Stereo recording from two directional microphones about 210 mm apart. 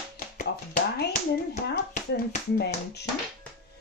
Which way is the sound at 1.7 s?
50° left (ahead or behind).